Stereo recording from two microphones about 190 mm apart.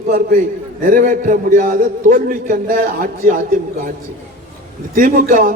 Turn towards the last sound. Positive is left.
turn(degrees=-45)  # may be behind; listen again after turning